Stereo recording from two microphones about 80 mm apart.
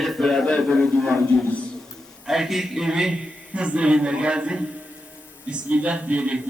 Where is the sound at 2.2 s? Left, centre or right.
Centre.